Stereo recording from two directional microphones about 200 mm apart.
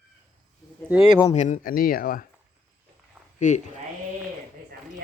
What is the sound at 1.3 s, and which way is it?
Speech, 40° left (ahead or behind).